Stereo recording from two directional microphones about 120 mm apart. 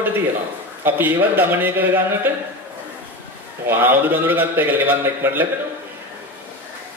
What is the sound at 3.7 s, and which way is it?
A man's voice, 15° right (ahead or behind).